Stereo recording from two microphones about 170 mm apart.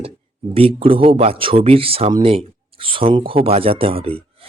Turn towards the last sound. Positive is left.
turn(degrees=-35)  # may be behind; listen again after turning